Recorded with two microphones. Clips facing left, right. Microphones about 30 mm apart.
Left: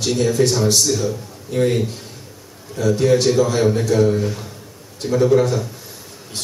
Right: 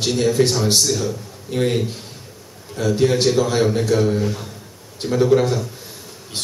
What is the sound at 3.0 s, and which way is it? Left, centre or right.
A man's voice, centre.